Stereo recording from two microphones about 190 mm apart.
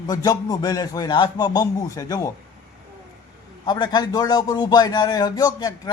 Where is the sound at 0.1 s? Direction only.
20° left (ahead or behind).